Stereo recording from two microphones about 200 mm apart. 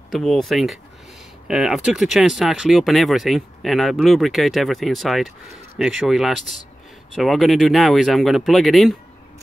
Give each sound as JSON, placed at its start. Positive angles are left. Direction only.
{"t": 0.1, "sound": "speech", "side_deg": 0}